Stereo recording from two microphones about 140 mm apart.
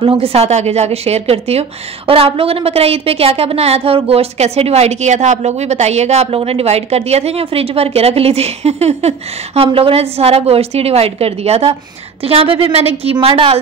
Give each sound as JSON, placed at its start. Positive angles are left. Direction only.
{"t": 0.0, "sound": "a woman's voice", "side_deg": -40}